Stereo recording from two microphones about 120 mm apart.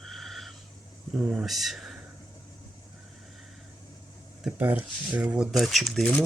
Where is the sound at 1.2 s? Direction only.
5° right (ahead or behind).